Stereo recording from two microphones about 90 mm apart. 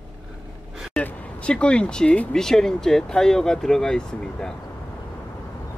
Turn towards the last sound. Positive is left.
turn(degrees=5)  # may be behind; listen again after turning